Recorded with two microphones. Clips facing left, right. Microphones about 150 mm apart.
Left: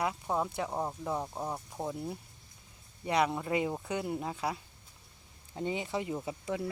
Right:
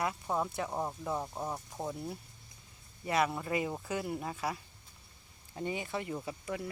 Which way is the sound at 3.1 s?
15° left (ahead or behind).